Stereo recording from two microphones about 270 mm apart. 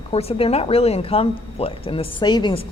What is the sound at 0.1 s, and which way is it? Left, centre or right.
Speech, left.